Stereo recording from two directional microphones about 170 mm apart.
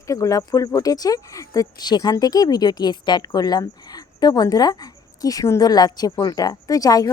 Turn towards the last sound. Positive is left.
turn(degrees=20)  # may be behind; listen again after turning